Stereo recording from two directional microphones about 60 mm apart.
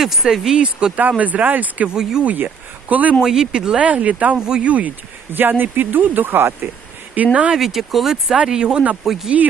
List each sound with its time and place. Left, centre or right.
0.0 s speech: centre
1.2 s speech: right
1.9 s speech: centre
2.2 s speech: right
3.2 s speech: centre
5.3 s speech: right
7.5 s speech: centre